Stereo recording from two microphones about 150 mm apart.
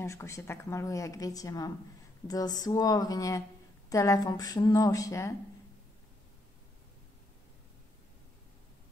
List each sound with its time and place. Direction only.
0.0 s a woman's voice: 20° left (ahead or behind)